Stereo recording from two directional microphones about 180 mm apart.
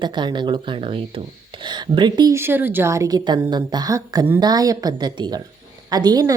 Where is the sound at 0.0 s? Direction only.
25° right (ahead or behind).